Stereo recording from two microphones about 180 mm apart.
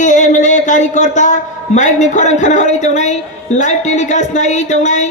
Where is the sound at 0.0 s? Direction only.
45° left (ahead or behind).